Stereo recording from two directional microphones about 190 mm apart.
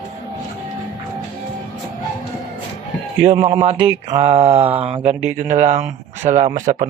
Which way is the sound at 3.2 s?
35° right (ahead or behind).